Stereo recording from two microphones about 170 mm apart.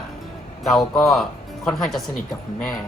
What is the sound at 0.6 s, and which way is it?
Speech, centre (ahead or behind).